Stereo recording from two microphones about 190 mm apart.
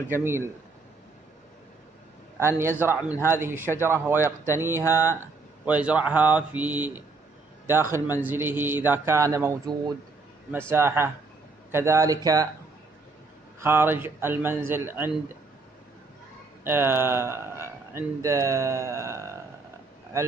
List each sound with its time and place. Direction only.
0.1 s speech: 10° right (ahead or behind)
2.3 s a man's voice: 15° right (ahead or behind)
13.6 s speech: 10° right (ahead or behind)
16.6 s speech: 10° right (ahead or behind)